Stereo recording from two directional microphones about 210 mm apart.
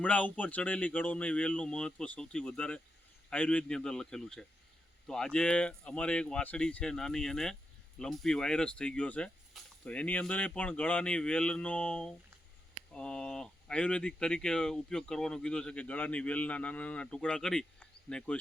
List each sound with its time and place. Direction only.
0.0 s speech: 5° left (ahead or behind)